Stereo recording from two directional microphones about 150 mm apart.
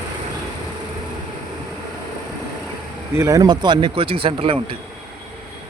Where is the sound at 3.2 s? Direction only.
20° right (ahead or behind); by 4.5 s 35° right (ahead or behind).